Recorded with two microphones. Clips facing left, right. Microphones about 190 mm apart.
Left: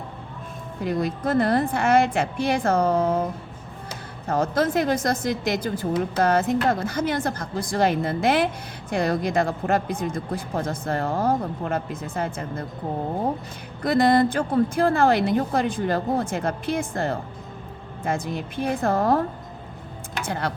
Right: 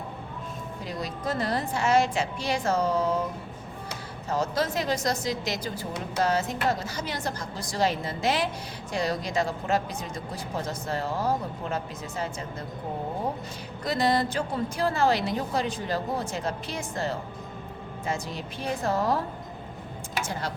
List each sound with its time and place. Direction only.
0.9 s a woman's voice: 55° left (ahead or behind)
4.3 s a woman's voice: 55° left (ahead or behind)
13.8 s a woman's voice: 55° left (ahead or behind)
20.2 s a woman's voice: 60° left (ahead or behind)